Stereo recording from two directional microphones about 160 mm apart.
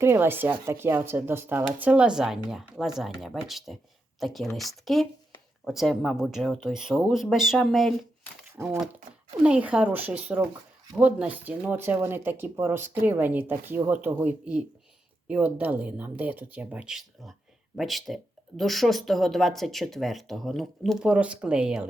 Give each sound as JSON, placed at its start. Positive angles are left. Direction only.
{"t": 0.0, "sound": "speech", "side_deg": -15}
{"t": 8.6, "sound": "speech", "side_deg": -15}